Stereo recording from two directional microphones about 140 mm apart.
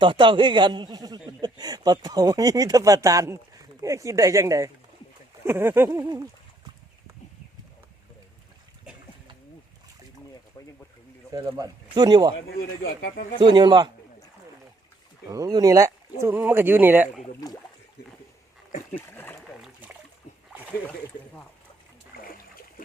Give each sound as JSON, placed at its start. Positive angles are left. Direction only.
{"t": 0.0, "sound": "a man's voice", "side_deg": -35}
{"t": 11.3, "sound": "a man's voice", "side_deg": -25}
{"t": 13.4, "sound": "speech", "side_deg": -30}
{"t": 15.3, "sound": "a man's voice", "side_deg": -25}
{"t": 18.9, "sound": "splash", "side_deg": 15}